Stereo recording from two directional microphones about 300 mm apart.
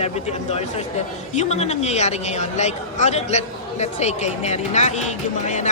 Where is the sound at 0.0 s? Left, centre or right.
Left.